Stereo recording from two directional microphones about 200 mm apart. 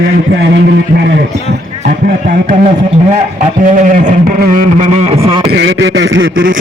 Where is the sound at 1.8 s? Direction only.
45° right (ahead or behind); by 5.5 s 30° right (ahead or behind).